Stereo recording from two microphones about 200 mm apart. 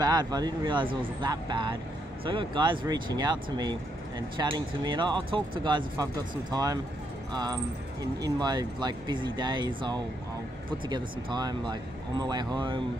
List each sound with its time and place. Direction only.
0.0 s speech: 20° right (ahead or behind)
8.2 s speech: 20° right (ahead or behind)